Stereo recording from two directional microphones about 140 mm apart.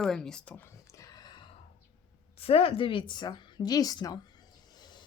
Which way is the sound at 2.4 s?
45° left (ahead or behind).